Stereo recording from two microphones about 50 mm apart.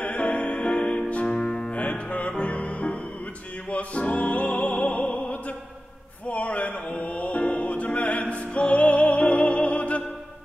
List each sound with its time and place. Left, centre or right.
0.0 s music: left
1.3 s music: centre
1.7 s music: left